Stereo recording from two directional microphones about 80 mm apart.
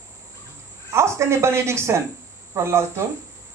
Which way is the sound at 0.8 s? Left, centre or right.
Right.